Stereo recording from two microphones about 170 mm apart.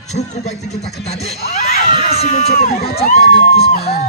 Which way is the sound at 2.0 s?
40° left (ahead or behind).